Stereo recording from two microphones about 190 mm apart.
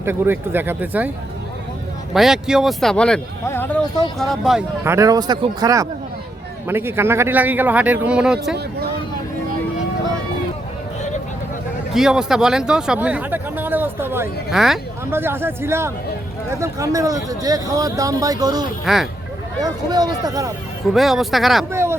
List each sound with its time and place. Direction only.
0.0 s a man's voice: 10° right (ahead or behind)
2.1 s speech: centre (ahead or behind)
4.8 s a man's voice: 15° right (ahead or behind)
11.9 s speech: 5° right (ahead or behind)
15.1 s a man's voice: 10° right (ahead or behind)
20.9 s speech: centre (ahead or behind)
21.7 s speech: 15° right (ahead or behind)